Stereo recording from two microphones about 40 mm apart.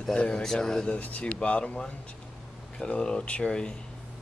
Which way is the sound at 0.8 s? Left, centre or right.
Left.